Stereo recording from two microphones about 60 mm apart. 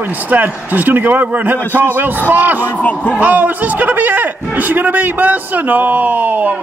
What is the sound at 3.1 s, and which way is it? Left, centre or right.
A man's voice, right.